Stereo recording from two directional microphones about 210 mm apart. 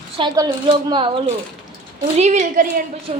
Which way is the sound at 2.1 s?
35° right (ahead or behind).